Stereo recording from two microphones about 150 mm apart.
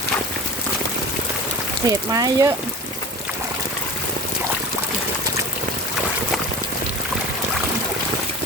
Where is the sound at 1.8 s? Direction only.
25° right (ahead or behind).